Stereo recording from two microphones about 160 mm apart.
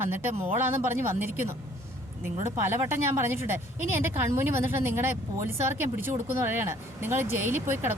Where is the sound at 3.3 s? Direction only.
15° right (ahead or behind).